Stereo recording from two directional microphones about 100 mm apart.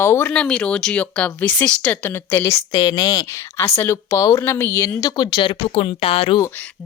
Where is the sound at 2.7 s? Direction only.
40° left (ahead or behind).